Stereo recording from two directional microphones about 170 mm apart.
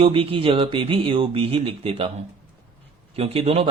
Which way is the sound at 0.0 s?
35° right (ahead or behind).